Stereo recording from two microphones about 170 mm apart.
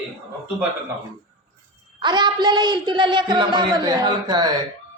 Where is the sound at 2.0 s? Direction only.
25° right (ahead or behind).